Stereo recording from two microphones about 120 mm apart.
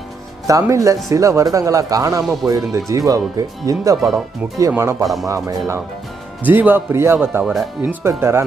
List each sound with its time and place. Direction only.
0.5 s speech: 30° right (ahead or behind)
5.0 s speech: centre (ahead or behind)
6.4 s speech: 15° right (ahead or behind)
7.4 s speech: 5° right (ahead or behind)
7.9 s speech: 20° right (ahead or behind)